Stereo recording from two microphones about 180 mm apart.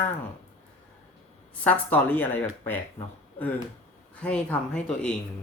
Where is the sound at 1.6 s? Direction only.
10° left (ahead or behind).